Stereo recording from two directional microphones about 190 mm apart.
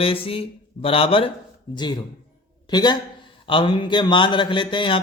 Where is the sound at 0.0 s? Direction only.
30° left (ahead or behind).